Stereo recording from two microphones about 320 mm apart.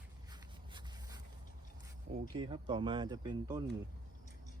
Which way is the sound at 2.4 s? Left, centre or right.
Centre.